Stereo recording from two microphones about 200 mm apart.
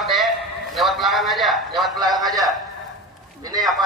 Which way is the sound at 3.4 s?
20° right (ahead or behind).